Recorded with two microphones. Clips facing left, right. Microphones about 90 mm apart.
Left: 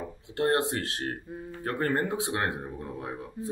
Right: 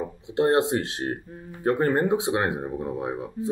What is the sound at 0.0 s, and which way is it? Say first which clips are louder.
Speech: right 5 dB; 20° right (ahead or behind).